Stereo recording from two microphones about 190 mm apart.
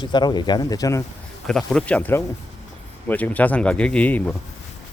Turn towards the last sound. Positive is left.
turn(degrees=10)  # may be behind; listen again after turning